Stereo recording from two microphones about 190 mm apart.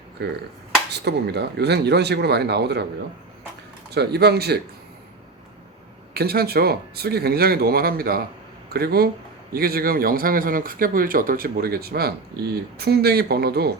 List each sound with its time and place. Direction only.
0.2 s speech: 60° right (ahead or behind)
3.9 s speech: 60° right (ahead or behind)
6.1 s speech: 55° right (ahead or behind)